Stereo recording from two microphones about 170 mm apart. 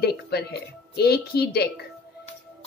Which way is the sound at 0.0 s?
70° left (ahead or behind).